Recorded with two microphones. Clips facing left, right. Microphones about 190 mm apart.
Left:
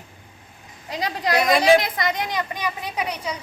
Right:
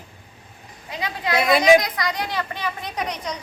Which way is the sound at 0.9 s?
35° left (ahead or behind).